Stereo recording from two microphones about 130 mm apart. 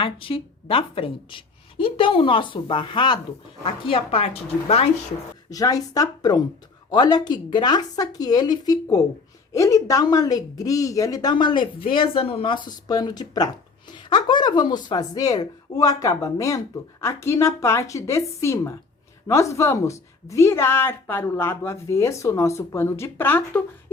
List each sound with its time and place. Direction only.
0.0 s speech: 45° left (ahead or behind)
5.5 s a woman's voice: 25° left (ahead or behind)